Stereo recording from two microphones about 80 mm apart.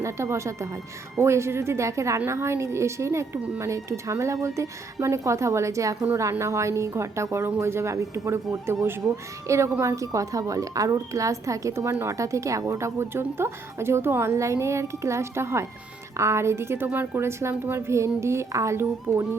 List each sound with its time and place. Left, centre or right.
0.0 s a woman's voice: right